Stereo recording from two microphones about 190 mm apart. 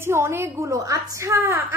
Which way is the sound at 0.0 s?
15° right (ahead or behind).